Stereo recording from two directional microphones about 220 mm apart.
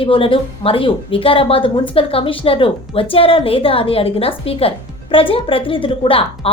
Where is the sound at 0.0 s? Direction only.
25° left (ahead or behind).